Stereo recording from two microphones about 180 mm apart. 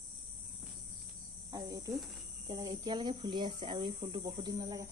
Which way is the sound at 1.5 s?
20° right (ahead or behind).